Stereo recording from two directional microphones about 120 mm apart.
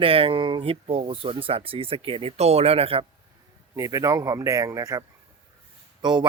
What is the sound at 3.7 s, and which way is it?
A man's voice, 30° right (ahead or behind).